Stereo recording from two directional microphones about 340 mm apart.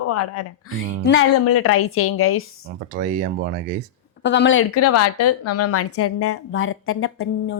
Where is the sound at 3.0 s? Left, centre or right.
Right.